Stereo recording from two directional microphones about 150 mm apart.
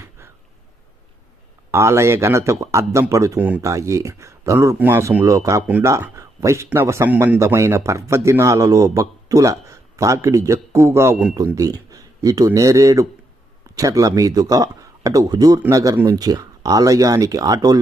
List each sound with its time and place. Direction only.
1.7 s speech: 20° right (ahead or behind)
5.6 s speech: 10° right (ahead or behind)
5.9 s speech: 20° right (ahead or behind)